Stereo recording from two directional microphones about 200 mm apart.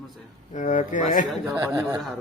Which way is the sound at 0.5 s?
40° left (ahead or behind).